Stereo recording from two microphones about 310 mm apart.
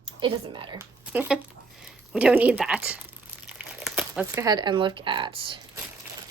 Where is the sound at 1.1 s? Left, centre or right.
Centre.